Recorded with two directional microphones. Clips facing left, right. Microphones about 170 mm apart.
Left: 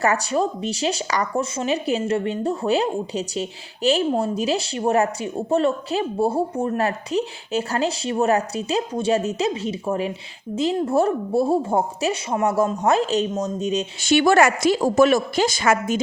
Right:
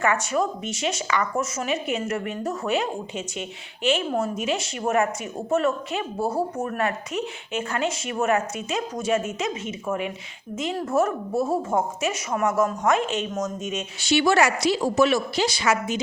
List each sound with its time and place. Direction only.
0.0 s a woman's voice: 35° left (ahead or behind)
14.0 s speech: 50° left (ahead or behind)